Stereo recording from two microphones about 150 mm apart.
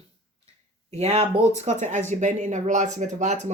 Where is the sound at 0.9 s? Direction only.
45° right (ahead or behind).